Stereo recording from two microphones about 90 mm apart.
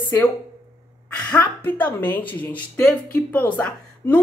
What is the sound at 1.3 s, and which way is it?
A woman's voice, 20° left (ahead or behind).